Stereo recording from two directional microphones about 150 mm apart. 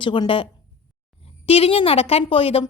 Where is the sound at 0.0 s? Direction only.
35° left (ahead or behind).